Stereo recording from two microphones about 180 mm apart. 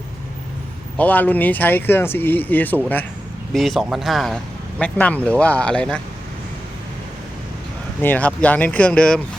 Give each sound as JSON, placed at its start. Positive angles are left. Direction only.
{"t": 0.9, "sound": "speech", "side_deg": 10}
{"t": 8.0, "sound": "speech", "side_deg": 10}